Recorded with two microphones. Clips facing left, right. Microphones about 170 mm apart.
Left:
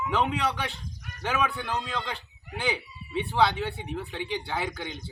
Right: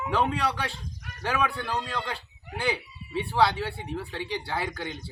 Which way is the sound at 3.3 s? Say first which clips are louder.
Right 1 dB; centre (ahead or behind).